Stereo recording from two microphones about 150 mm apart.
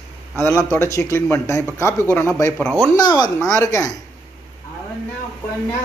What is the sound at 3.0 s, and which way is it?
Speech, 30° left (ahead or behind).